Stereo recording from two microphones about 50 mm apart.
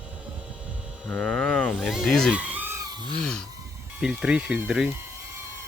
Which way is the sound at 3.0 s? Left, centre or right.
Centre.